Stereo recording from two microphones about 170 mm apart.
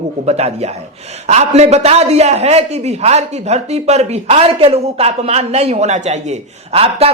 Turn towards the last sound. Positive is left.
turn(degrees=-35)  # may be behind; listen again after turning